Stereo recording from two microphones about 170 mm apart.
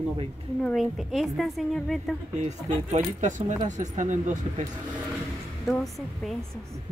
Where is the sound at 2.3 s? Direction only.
45° right (ahead or behind).